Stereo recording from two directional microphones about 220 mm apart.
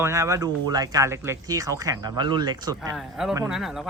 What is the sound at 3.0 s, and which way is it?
Speech, centre (ahead or behind).